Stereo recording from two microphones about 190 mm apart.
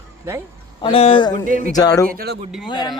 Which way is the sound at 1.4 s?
45° right (ahead or behind).